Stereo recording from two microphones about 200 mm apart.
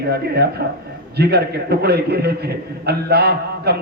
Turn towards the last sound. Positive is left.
turn(degrees=-55)  # may be behind; listen again after turning